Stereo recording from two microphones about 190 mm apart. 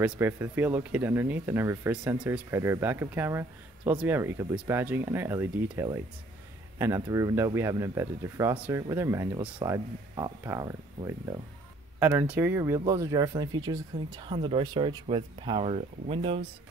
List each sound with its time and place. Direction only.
0.0 s speech: 10° right (ahead or behind); by 16.4 s 30° right (ahead or behind)